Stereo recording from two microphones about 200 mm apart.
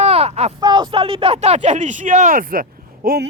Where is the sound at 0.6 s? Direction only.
20° right (ahead or behind).